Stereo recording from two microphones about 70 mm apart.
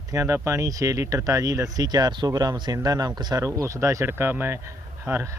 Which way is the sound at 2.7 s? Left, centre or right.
Right.